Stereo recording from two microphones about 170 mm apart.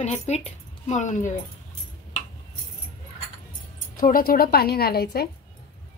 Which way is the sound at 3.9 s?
55° left (ahead or behind).